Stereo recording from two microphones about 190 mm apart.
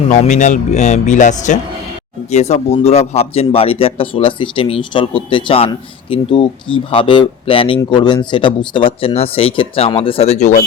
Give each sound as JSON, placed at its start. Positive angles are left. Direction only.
{"t": 0.1, "sound": "speech", "side_deg": 40}